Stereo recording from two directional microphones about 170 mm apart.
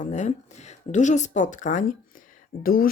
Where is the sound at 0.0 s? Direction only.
45° left (ahead or behind).